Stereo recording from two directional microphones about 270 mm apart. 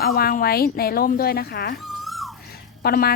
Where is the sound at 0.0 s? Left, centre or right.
Left.